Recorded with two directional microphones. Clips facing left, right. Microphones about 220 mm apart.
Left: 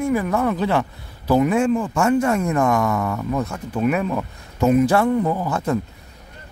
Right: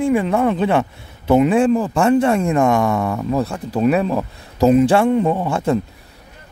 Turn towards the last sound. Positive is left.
turn(degrees=-30)  # may be behind; listen again after turning